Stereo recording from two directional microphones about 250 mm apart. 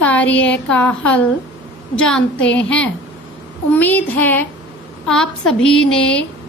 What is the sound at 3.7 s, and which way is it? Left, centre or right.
Child singing, centre.